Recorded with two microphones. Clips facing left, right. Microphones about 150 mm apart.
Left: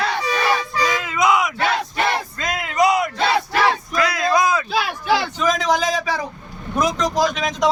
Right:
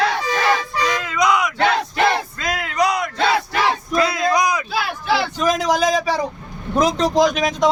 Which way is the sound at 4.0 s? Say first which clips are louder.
Right 1 dB; 25° right (ahead or behind).